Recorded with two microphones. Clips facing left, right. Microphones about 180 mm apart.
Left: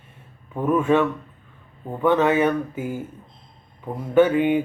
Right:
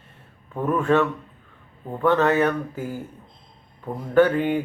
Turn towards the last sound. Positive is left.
turn(degrees=5)  # may be behind; listen again after turning